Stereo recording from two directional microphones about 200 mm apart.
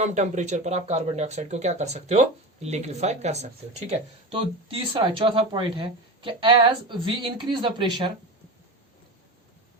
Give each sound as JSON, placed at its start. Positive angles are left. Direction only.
{"t": 0.0, "sound": "speech", "side_deg": -35}